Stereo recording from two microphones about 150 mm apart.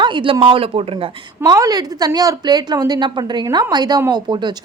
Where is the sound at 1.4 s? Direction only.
25° right (ahead or behind).